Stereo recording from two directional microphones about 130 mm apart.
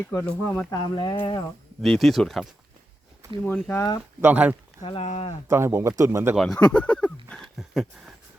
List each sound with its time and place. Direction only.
0.0 s speech: 15° left (ahead or behind)
0.7 s speech: 35° left (ahead or behind)
1.8 s speech: centre (ahead or behind)
3.4 s speech: 15° left (ahead or behind)
4.2 s speech: 10° right (ahead or behind)
4.8 s speech: 40° left (ahead or behind)
5.0 s speech: 60° left (ahead or behind)
5.5 s a man's voice: 20° right (ahead or behind)
6.3 s speech: 5° left (ahead or behind)